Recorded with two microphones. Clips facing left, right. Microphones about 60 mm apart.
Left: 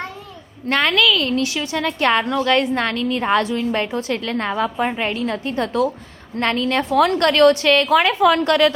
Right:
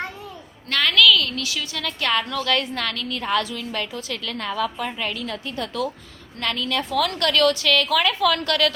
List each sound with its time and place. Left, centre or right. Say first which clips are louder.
0.7 s a woman's voice: left 1 dB; left